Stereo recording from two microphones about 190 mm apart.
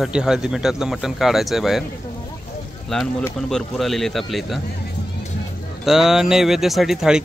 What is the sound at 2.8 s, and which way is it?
Speech, 5° left (ahead or behind).